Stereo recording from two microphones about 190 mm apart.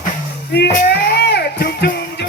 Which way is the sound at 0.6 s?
60° left (ahead or behind).